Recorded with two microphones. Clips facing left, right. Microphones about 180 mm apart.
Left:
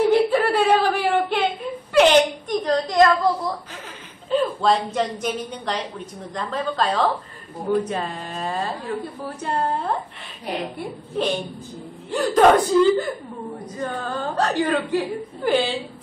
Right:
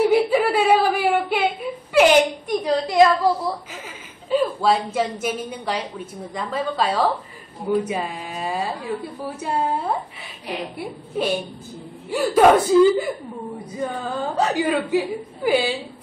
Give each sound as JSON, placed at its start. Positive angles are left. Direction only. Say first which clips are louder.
{"t": 0.1, "sound": "whimper", "louder": "even", "side_deg": -5}
{"t": 4.3, "sound": "a woman's voice", "louder": "even", "side_deg": -5}